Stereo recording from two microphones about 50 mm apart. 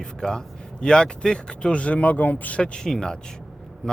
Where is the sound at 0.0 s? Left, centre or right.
Centre.